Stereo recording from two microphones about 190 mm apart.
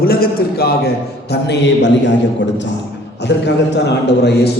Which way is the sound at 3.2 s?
65° left (ahead or behind).